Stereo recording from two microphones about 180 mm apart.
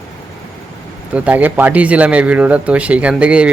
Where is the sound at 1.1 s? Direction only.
5° right (ahead or behind).